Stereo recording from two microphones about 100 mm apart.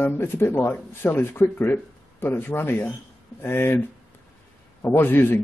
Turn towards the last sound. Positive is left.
turn(degrees=20)  # may be behind; listen again after turning